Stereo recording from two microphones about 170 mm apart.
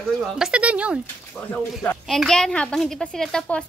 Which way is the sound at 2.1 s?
Centre (ahead or behind).